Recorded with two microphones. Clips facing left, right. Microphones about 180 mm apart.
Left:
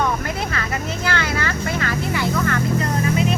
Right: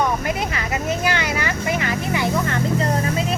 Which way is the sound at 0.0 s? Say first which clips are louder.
Right 1 dB; 15° right (ahead or behind).